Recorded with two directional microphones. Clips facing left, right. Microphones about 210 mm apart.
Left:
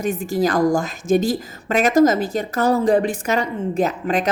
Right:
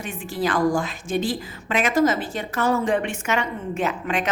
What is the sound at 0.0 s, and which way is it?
A woman's voice, 40° left (ahead or behind).